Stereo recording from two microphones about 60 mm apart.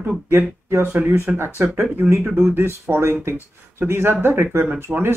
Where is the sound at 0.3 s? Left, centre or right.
Right.